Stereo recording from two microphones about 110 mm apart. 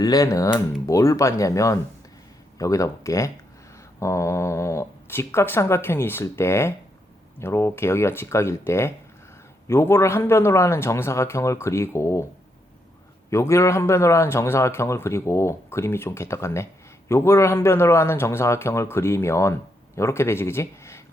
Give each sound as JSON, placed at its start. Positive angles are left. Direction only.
{"t": 0.0, "sound": "a man's voice", "side_deg": 30}
{"t": 13.3, "sound": "a man's voice", "side_deg": 25}